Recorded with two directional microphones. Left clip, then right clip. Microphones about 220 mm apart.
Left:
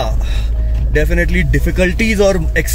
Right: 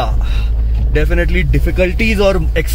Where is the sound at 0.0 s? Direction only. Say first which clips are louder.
Right 1 dB; 20° left (ahead or behind).